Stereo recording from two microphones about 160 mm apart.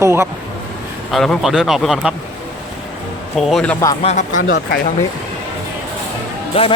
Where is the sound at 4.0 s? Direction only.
45° left (ahead or behind).